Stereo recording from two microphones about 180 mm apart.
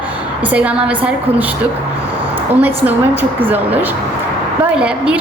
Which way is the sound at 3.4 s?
10° right (ahead or behind).